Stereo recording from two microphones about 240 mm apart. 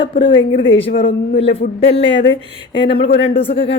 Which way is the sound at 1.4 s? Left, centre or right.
Left.